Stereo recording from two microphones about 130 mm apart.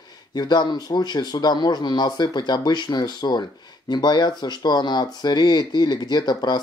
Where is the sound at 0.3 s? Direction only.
30° left (ahead or behind).